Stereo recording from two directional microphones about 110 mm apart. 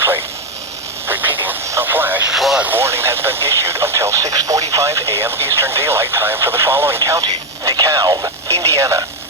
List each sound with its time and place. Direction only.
1.0 s radio: 20° right (ahead or behind)
2.3 s radio: 5° right (ahead or behind)
2.6 s speech: 20° right (ahead or behind)